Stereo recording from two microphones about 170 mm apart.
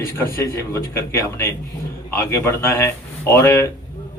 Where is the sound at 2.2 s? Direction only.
15° left (ahead or behind).